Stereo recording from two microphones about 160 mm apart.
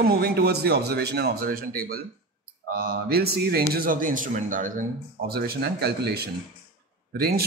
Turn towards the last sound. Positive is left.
turn(degrees=-70)  # may be behind; listen again after turning